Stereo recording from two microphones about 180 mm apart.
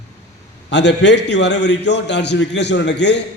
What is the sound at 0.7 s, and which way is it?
A man's voice, 75° left (ahead or behind).